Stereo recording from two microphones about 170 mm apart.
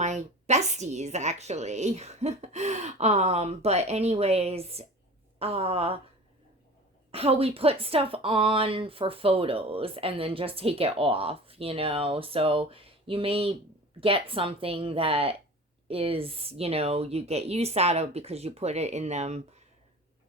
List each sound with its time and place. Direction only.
0.0 s speech: 45° right (ahead or behind)
7.1 s speech: 35° right (ahead or behind)